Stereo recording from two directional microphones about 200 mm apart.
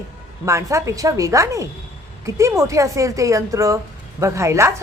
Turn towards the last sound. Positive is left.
turn(degrees=-15)  # may be behind; listen again after turning